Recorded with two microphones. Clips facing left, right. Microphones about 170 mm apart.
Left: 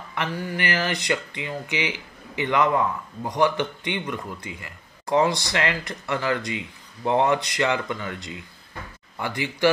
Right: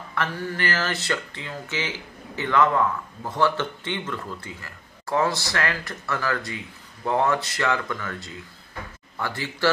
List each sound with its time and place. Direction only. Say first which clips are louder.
0.1 s speech: even; 15° left (ahead or behind)